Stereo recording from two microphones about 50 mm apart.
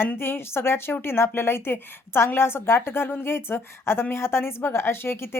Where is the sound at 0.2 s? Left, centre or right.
Left.